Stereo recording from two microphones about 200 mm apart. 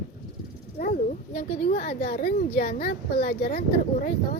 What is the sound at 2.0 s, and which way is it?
Speech, 35° left (ahead or behind).